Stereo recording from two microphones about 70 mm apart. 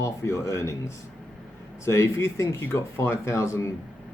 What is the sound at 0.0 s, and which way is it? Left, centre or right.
Speech, left.